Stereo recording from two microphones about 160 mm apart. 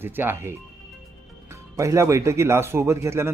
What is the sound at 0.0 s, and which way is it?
Speech, 15° right (ahead or behind).